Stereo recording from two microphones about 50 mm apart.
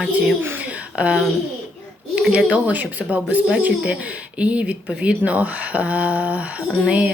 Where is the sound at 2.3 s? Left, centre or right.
Right.